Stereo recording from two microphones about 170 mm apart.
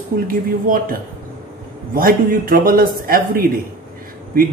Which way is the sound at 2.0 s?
55° right (ahead or behind).